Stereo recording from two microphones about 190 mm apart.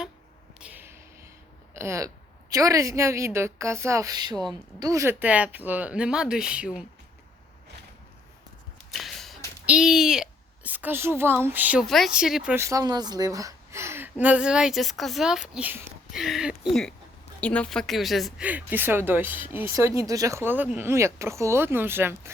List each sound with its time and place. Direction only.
0.6 s a sound: 10° right (ahead or behind)
1.7 s a woman's voice: 15° right (ahead or behind)
8.9 s whip: centre (ahead or behind)
9.6 s a woman's voice: 5° right (ahead or behind)